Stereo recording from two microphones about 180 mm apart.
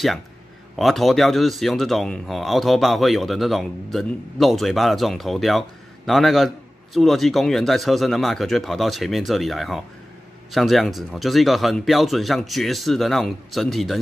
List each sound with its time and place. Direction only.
0.7 s speech: centre (ahead or behind)